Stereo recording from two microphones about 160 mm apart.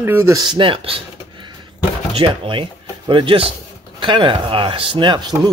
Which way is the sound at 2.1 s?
35° right (ahead or behind).